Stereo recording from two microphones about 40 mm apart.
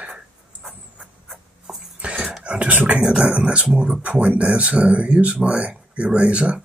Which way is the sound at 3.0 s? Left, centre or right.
Right.